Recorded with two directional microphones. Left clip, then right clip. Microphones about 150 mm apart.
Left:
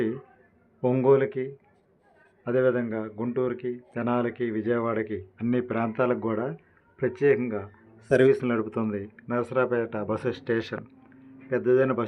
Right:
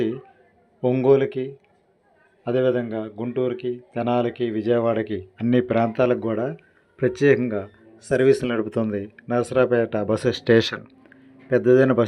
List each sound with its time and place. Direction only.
0.9 s speech: 20° right (ahead or behind)
6.9 s speech: 40° right (ahead or behind)
7.9 s speech: centre (ahead or behind)
8.3 s speech: 35° right (ahead or behind); by 10.8 s 65° right (ahead or behind)
11.4 s speech: 45° right (ahead or behind)